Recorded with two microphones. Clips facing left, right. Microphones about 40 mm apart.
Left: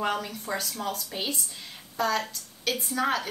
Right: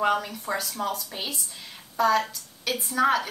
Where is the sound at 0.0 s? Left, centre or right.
Centre.